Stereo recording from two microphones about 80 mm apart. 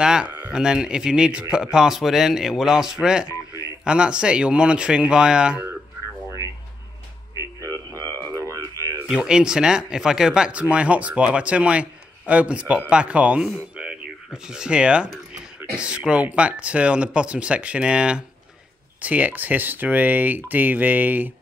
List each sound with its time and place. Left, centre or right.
0.0 s speech: centre
7.3 s a sound: right
9.0 s speech: centre